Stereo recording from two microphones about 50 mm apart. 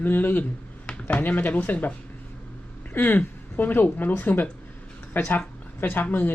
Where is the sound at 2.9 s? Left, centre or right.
Left.